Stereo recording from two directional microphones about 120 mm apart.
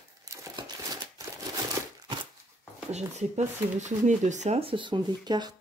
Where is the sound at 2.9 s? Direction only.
75° right (ahead or behind).